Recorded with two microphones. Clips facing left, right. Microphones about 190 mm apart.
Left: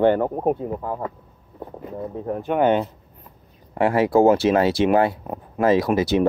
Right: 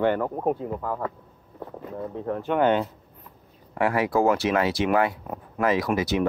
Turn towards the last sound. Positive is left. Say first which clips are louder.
# left 5 dB
turn(degrees=30)  # may be behind; listen again after turning